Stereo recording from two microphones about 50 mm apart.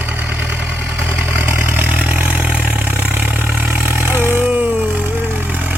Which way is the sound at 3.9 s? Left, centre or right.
Right.